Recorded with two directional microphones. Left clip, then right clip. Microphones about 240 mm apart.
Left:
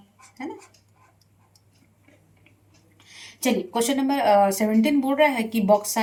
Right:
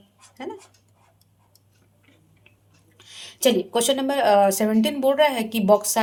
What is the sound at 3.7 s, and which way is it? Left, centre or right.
Speech, right.